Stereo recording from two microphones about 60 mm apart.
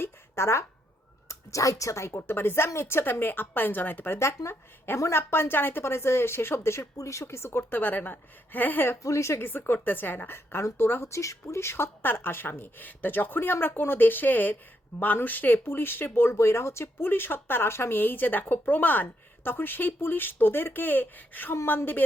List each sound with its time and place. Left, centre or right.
0.0 s a sound: left
1.3 s speech: left
4.4 s speech: left
4.9 s speech: left
5.3 s speech: left
6.9 s speech: left
7.7 s speech: left
9.0 s speech: left
9.4 s speech: left
11.1 s speech: left